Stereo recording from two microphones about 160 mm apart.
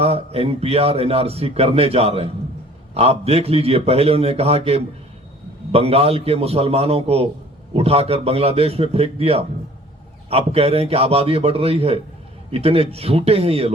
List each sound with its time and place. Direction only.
0.0 s a man's voice: 40° right (ahead or behind)